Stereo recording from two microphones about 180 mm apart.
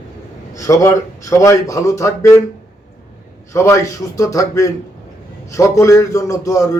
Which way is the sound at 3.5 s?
15° left (ahead or behind).